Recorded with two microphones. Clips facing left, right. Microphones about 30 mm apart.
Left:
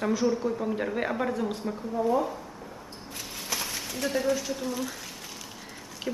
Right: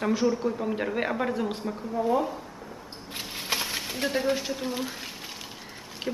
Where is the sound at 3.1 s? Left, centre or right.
Right.